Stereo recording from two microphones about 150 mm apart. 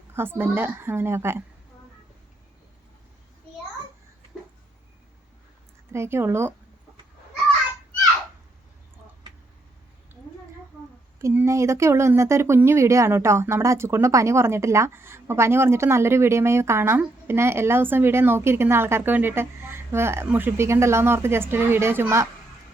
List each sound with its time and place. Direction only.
0.1 s speech: 15° right (ahead or behind)
4.3 s a sound: centre (ahead or behind)
5.9 s speech: 15° right (ahead or behind)
11.2 s speech: 20° right (ahead or behind)